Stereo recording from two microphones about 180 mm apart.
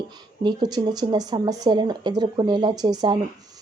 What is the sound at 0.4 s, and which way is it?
Speech, 25° right (ahead or behind).